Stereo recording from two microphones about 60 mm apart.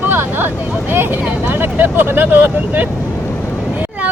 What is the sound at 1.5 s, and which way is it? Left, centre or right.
Speech, right.